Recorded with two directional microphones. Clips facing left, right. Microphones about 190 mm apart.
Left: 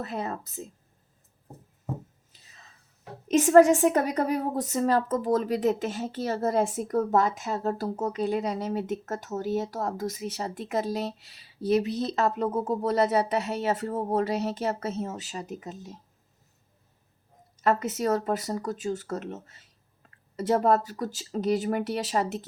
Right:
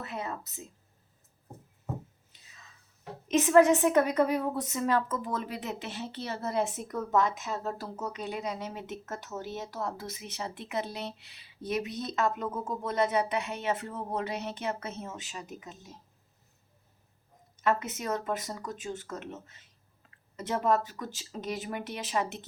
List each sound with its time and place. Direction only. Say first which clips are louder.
0.0 s a woman's voice: left 5 dB; 40° left (ahead or behind)
3.2 s a woman's voice: left 4 dB; 40° left (ahead or behind)
17.6 s a woman's voice: left 5 dB; 40° left (ahead or behind)